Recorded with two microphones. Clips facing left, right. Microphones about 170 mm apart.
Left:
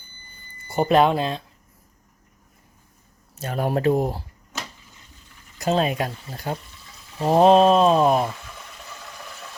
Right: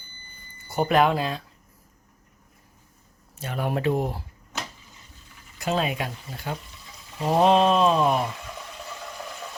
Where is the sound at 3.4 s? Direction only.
40° left (ahead or behind).